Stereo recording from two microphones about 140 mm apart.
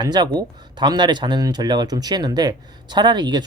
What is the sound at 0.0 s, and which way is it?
Speech, 30° right (ahead or behind).